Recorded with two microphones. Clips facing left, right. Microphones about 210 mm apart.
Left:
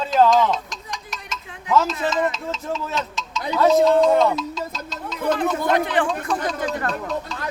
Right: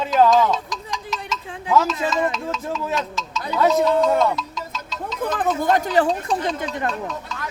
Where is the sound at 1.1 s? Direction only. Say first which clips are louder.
Right 6 dB; 30° right (ahead or behind).